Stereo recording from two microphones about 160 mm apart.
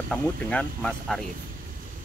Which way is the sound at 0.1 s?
10° left (ahead or behind).